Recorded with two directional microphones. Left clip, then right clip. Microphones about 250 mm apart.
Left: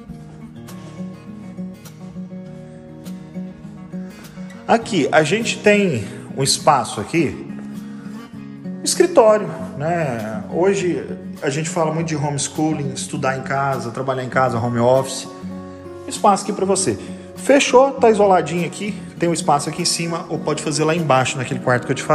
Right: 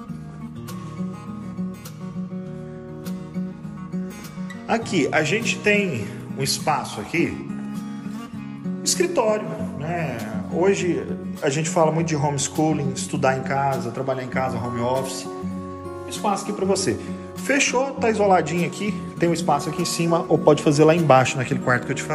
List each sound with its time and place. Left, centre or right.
4.6 s a man's voice: centre
8.8 s speech: left
9.9 s a man's voice: centre